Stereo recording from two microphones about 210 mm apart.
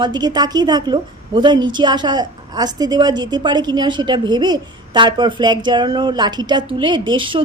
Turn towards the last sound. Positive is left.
turn(degrees=-25)  # may be behind; listen again after turning